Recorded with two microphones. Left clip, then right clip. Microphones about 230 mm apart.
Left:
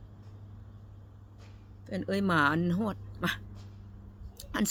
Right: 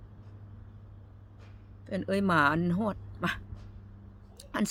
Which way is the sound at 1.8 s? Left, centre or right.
Centre.